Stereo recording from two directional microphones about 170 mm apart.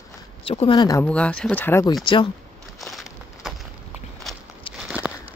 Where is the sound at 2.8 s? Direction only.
Centre (ahead or behind).